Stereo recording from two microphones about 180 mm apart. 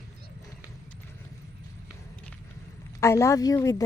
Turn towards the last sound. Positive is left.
turn(degrees=20)  # may be behind; listen again after turning